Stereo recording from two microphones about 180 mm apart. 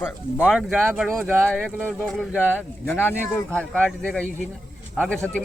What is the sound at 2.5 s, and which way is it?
Speech, 10° left (ahead or behind).